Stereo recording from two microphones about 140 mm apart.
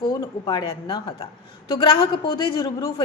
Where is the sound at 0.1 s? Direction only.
30° left (ahead or behind).